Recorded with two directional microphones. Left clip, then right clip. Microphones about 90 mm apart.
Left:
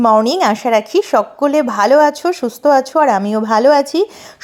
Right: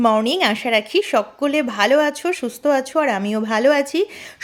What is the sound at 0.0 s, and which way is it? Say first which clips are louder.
Speech: left 5 dB; 30° left (ahead or behind).